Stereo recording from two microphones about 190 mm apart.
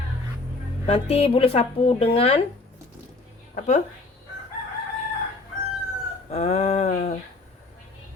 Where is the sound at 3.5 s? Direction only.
40° left (ahead or behind).